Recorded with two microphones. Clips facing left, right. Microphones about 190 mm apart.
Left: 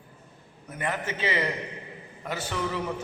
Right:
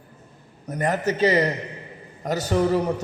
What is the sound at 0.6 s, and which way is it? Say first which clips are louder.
A man's voice: right 8 dB; 40° right (ahead or behind).